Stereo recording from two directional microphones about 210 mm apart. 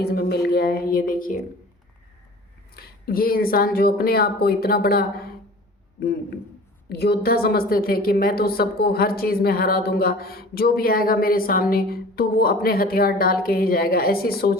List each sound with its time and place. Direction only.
0.0 s a woman's voice: 50° left (ahead or behind)
2.7 s a woman's voice: 45° left (ahead or behind)
6.8 s a woman's voice: 50° left (ahead or behind)